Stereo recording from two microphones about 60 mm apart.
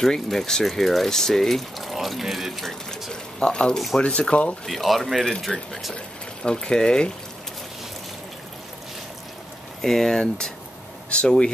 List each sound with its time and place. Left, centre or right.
0.0 s speech: centre
4.6 s speech: centre
6.4 s speech: centre
9.8 s speech: centre